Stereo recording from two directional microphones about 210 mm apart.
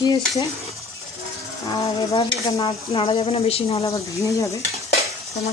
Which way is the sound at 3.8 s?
15° left (ahead or behind).